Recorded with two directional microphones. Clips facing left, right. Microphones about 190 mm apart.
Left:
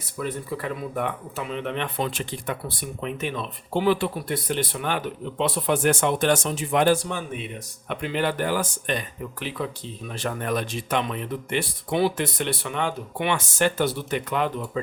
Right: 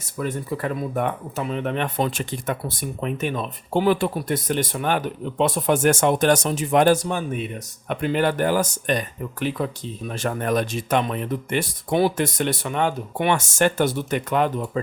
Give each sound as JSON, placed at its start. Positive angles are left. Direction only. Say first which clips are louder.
{"t": 0.0, "sound": "speech", "louder": "right 3 dB", "side_deg": -45}